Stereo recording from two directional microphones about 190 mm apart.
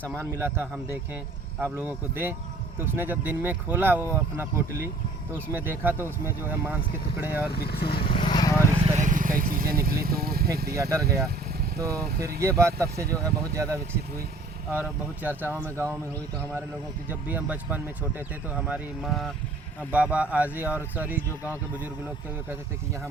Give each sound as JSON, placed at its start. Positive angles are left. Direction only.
{"t": 0.2, "sound": "speech", "side_deg": -15}
{"t": 7.5, "sound": "speech", "side_deg": 55}
{"t": 8.0, "sound": "vehicle", "side_deg": 30}
{"t": 8.8, "sound": "vehicle", "side_deg": -40}
{"t": 10.8, "sound": "speech", "side_deg": -15}
{"t": 17.1, "sound": "speech", "side_deg": -10}